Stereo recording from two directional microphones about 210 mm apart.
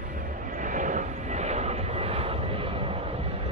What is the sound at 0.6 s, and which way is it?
Vehicle, 35° right (ahead or behind).